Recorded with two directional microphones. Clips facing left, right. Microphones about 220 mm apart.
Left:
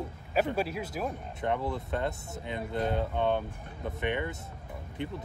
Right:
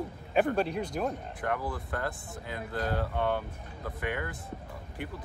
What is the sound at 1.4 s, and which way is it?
Speech, 25° left (ahead or behind).